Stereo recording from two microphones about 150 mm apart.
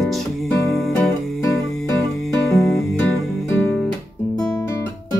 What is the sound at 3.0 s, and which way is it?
Music, 15° left (ahead or behind).